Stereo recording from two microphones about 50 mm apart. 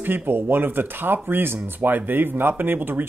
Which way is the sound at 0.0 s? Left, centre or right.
Right.